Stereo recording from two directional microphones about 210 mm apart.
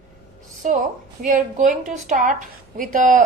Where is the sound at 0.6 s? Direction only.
35° right (ahead or behind).